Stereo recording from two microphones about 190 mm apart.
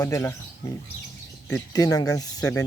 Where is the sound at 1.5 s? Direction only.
15° left (ahead or behind).